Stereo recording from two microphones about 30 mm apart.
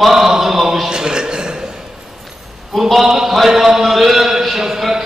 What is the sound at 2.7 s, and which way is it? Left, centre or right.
Speech, centre.